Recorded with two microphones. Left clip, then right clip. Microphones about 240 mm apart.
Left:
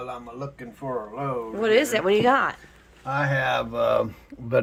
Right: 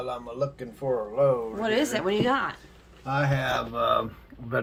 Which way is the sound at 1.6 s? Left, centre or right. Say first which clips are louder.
Left 8 dB; centre.